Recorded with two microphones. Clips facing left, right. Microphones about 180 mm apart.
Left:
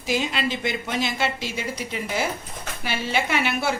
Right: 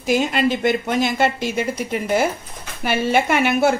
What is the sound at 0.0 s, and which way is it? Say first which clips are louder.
A woman's voice: right 7 dB; 50° right (ahead or behind).